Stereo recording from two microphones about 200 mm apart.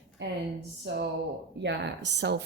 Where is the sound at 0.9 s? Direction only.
60° right (ahead or behind).